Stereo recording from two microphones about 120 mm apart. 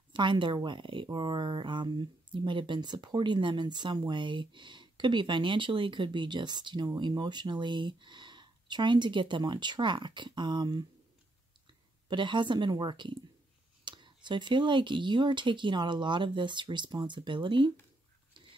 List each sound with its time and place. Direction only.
0.1 s speech: 40° right (ahead or behind)
12.1 s speech: 40° right (ahead or behind)